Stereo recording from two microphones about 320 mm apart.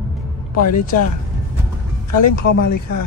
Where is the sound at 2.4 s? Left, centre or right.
Left.